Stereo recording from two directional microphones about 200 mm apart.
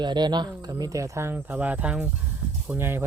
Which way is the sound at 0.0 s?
20° right (ahead or behind).